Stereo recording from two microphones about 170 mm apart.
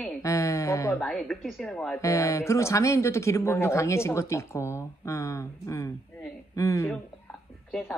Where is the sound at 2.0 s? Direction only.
20° left (ahead or behind).